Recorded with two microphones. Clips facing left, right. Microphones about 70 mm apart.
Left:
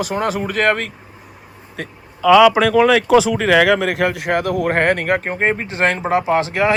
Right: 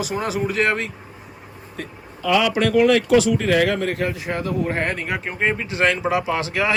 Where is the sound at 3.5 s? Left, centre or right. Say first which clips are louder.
Left 9 dB; left.